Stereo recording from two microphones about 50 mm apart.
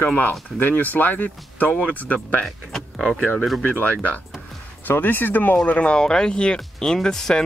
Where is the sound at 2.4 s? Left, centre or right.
Centre.